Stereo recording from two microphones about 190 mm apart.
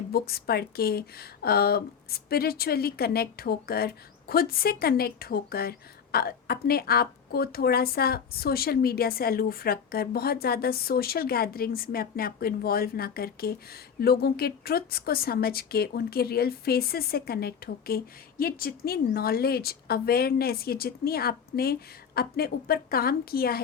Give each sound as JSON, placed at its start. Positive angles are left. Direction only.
{"t": 0.1, "sound": "speech", "side_deg": 55}